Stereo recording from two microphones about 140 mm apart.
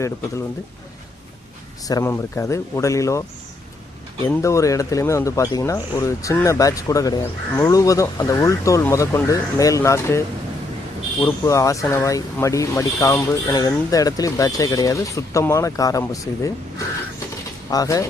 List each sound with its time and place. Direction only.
1.9 s speech: 20° left (ahead or behind)
4.4 s speech: 20° left (ahead or behind)